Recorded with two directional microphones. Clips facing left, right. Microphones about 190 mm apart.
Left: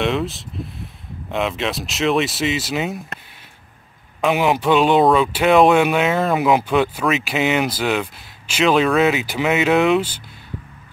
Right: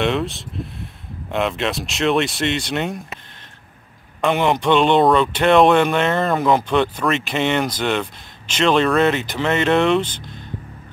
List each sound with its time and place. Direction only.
0.0 s speech: centre (ahead or behind)
4.2 s speech: 5° left (ahead or behind)